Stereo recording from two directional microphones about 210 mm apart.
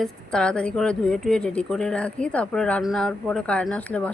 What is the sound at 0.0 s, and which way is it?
Speech, 5° left (ahead or behind).